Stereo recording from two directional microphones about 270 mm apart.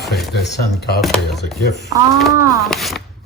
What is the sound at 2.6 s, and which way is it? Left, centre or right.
Speech, centre.